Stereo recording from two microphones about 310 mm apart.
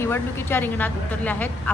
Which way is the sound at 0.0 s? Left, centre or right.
Centre.